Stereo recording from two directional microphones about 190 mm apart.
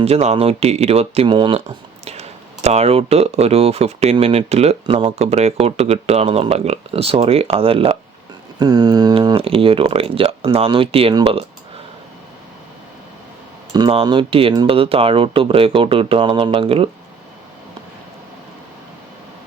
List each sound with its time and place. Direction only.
0.0 s speech: 35° right (ahead or behind)
13.7 s speech: 25° right (ahead or behind)